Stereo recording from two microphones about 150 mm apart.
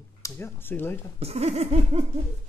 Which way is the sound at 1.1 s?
45° right (ahead or behind).